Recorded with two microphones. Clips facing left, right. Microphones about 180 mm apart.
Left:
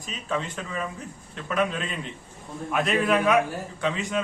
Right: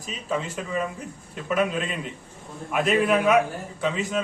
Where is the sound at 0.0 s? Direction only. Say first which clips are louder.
Right 1 dB; 5° right (ahead or behind).